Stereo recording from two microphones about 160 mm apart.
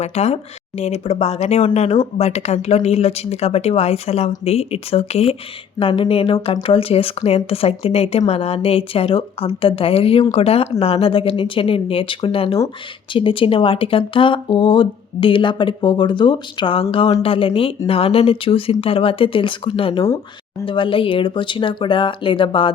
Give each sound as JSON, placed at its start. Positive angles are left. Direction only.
{"t": 0.0, "sound": "speech", "side_deg": 40}